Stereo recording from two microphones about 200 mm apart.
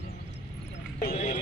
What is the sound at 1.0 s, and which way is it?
Clip-clop, 45° left (ahead or behind).